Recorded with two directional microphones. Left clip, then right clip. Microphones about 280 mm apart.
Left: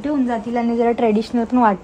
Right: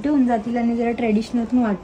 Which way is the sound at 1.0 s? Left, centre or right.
Left.